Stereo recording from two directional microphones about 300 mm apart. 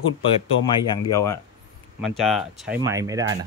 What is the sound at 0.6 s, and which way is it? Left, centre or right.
Speech, centre.